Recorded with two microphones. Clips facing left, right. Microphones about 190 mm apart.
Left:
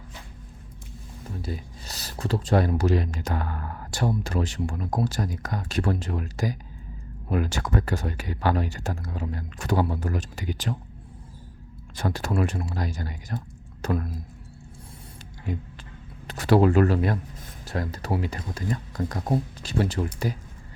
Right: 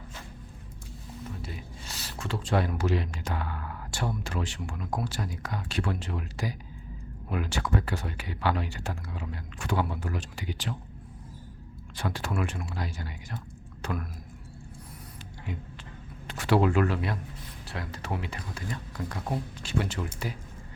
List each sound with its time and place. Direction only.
1.4 s speech: 35° left (ahead or behind)
11.9 s speech: 40° left (ahead or behind)
13.9 s speech: 30° left (ahead or behind)
16.2 s speech: 40° left (ahead or behind)